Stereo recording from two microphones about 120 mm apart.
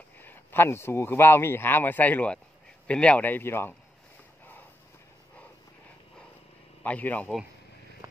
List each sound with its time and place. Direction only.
0.2 s speech: 15° left (ahead or behind)
6.8 s speech: 15° left (ahead or behind)
8.0 s a sound: 30° right (ahead or behind)